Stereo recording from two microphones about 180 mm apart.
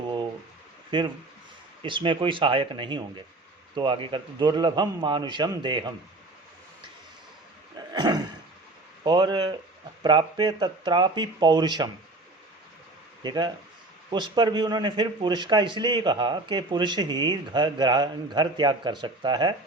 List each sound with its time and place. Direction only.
0.9 s a man's voice: 25° right (ahead or behind)
7.9 s a sound: 25° right (ahead or behind)
9.0 s a man's voice: 25° right (ahead or behind)
13.2 s a man's voice: 25° right (ahead or behind)